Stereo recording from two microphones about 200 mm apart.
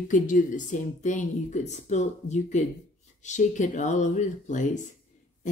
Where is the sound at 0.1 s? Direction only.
40° left (ahead or behind).